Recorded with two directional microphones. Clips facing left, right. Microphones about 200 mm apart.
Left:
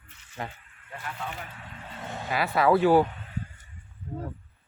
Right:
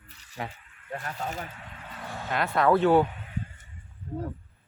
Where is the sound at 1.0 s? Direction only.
40° right (ahead or behind).